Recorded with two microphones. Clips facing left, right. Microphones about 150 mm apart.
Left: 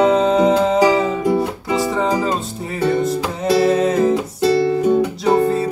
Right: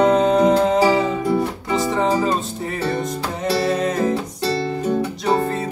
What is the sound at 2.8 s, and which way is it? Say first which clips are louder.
Music: left 7 dB; 10° left (ahead or behind).